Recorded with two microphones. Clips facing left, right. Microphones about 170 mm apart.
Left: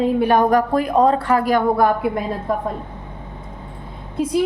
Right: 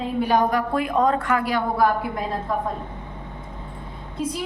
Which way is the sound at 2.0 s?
60° left (ahead or behind).